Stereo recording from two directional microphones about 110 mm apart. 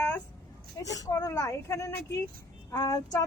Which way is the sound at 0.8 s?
30° left (ahead or behind).